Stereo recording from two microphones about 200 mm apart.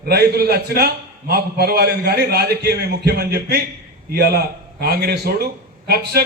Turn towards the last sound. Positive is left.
turn(degrees=-50)  # may be behind; listen again after turning